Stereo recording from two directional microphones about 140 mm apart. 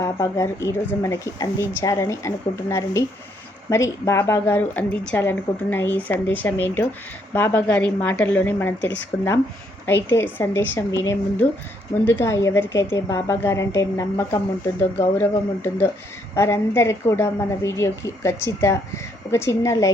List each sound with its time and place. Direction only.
0.0 s a woman's voice: 20° left (ahead or behind)
9.8 s a woman's voice: 15° left (ahead or behind)